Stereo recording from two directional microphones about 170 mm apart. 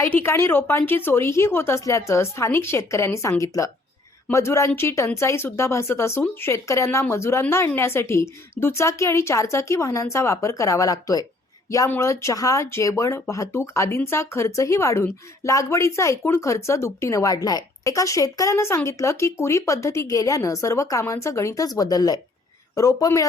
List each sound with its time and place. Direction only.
0.2 s speech: 15° left (ahead or behind)